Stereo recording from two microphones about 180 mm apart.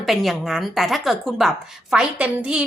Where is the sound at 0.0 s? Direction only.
Centre (ahead or behind).